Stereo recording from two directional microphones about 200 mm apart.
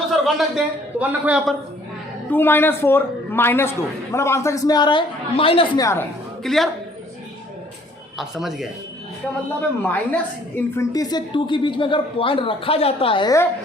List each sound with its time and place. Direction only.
0.1 s a man's voice: centre (ahead or behind)
2.3 s a man's voice: 10° left (ahead or behind); by 5.8 s 25° left (ahead or behind)
5.8 s a man's voice: 15° left (ahead or behind)
6.4 s a woman's voice: centre (ahead or behind)
8.2 s a woman's voice: centre (ahead or behind); by 13.5 s 20° left (ahead or behind)